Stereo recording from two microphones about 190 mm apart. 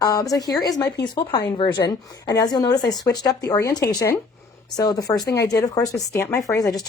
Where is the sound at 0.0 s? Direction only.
20° left (ahead or behind).